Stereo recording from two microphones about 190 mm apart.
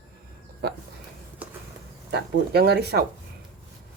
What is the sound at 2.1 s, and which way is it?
Speech, 60° right (ahead or behind).